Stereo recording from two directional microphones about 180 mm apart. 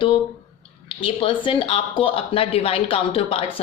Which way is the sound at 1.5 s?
30° left (ahead or behind).